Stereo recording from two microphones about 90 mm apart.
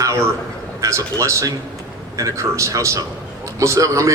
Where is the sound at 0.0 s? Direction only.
35° right (ahead or behind).